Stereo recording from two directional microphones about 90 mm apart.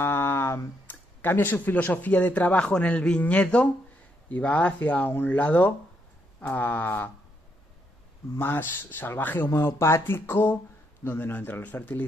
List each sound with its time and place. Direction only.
0.0 s speech: 25° left (ahead or behind)
8.4 s speech: 25° left (ahead or behind)